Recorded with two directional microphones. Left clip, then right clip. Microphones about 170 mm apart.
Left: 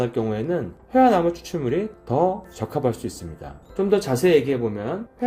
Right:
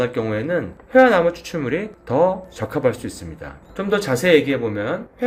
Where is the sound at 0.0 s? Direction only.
40° left (ahead or behind).